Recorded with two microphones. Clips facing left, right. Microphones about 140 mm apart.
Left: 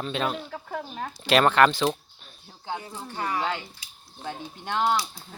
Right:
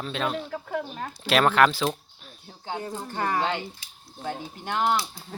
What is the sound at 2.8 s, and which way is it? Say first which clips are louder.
Speech: right 4 dB; 50° right (ahead or behind).